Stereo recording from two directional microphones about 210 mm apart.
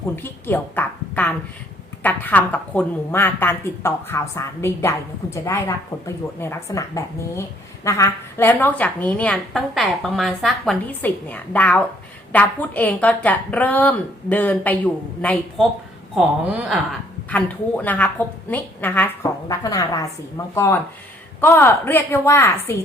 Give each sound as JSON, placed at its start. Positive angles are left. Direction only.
{"t": 0.2, "sound": "a woman's voice", "side_deg": 10}
{"t": 17.2, "sound": "a woman's voice", "side_deg": 5}